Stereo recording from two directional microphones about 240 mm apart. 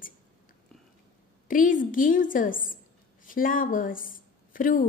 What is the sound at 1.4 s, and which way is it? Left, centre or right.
A woman's voice, left.